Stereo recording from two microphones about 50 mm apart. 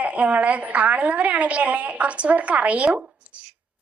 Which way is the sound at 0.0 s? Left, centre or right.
Right.